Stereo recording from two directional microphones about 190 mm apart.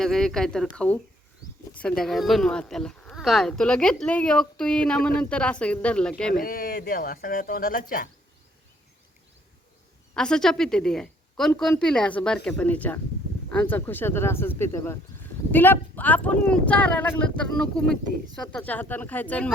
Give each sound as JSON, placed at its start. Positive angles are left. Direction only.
{"t": 0.0, "sound": "speech", "side_deg": 0}
{"t": 6.4, "sound": "speech", "side_deg": 50}
{"t": 10.2, "sound": "speech", "side_deg": 5}